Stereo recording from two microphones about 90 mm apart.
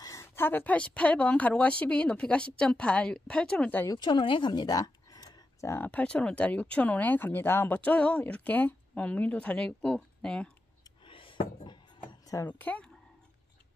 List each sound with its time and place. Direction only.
0.0 s a sound: 40° left (ahead or behind)
0.4 s speech: 20° left (ahead or behind)
3.9 s speech: 60° left (ahead or behind)
5.9 s speech: 15° left (ahead or behind)
11.1 s a sound: 75° left (ahead or behind)
12.4 s speech: 20° left (ahead or behind)